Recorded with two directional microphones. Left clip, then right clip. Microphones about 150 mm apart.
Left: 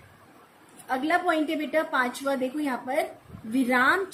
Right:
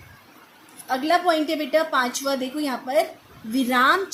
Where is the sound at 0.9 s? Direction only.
55° right (ahead or behind).